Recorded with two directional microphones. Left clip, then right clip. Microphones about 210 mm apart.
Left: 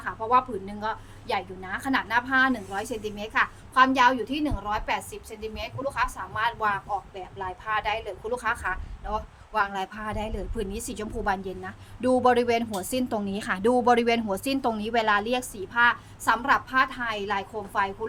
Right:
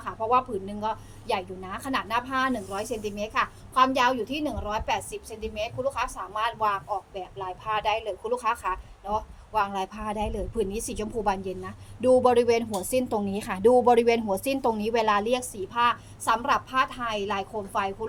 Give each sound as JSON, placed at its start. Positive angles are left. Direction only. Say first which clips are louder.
{"t": 0.0, "sound": "a woman's voice", "louder": "left 1 dB", "side_deg": 15}